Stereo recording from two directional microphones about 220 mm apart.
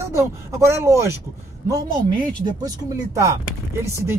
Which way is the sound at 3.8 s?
10° right (ahead or behind).